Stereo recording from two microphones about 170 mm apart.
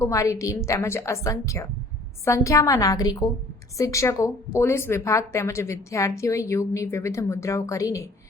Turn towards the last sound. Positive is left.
turn(degrees=20)  # may be behind; listen again after turning